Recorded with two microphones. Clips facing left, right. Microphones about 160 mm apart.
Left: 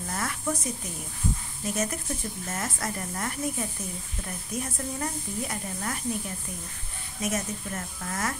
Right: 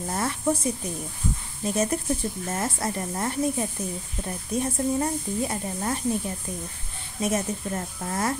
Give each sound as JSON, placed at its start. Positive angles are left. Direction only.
{"t": 0.0, "sound": "speech", "side_deg": -30}
{"t": 1.6, "sound": "speech", "side_deg": -30}